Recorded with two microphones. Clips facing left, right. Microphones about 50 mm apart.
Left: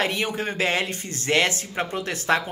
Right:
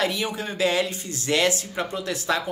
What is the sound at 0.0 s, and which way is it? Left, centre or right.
Speech, left.